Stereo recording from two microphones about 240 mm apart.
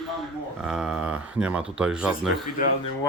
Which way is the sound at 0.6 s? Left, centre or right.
Centre.